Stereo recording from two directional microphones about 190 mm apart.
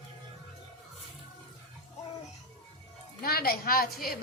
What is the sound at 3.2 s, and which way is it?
Music, 50° left (ahead or behind).